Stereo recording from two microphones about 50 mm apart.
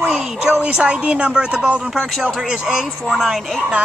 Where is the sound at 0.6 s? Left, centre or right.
Centre.